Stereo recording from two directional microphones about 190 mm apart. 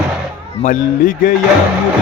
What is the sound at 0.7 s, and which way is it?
Music, 45° left (ahead or behind).